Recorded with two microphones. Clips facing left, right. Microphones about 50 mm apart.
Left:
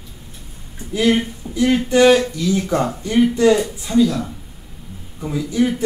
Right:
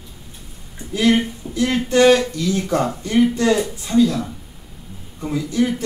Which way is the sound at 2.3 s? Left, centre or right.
Left.